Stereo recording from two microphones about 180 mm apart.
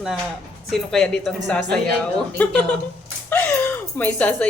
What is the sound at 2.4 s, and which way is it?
Speech, 10° left (ahead or behind).